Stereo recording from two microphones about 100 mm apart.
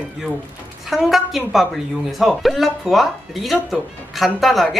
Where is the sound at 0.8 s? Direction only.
Centre (ahead or behind).